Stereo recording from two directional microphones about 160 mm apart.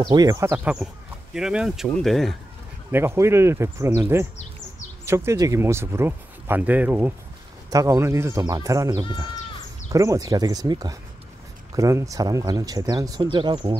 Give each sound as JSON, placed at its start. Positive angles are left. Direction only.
{"t": 0.1, "sound": "speech", "side_deg": -25}
{"t": 0.8, "sound": "speech", "side_deg": -5}
{"t": 2.9, "sound": "speech", "side_deg": -15}